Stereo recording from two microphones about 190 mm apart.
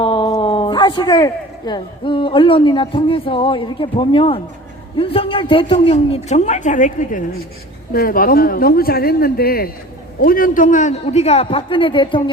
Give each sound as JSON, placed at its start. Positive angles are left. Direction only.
{"t": 0.0, "sound": "a man's voice", "side_deg": 25}